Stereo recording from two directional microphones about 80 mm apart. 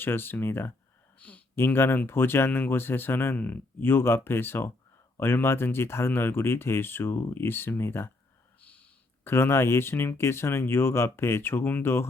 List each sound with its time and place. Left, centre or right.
0.0 s speech: left
9.2 s speech: left